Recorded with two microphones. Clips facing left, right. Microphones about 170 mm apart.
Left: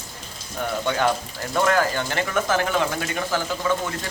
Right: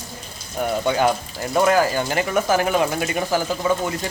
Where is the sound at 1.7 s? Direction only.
10° right (ahead or behind).